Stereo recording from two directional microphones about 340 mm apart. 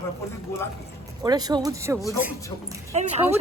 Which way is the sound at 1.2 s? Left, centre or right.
Centre.